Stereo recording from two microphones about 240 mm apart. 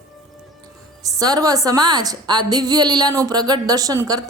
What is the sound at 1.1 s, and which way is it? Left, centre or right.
A woman's voice, centre.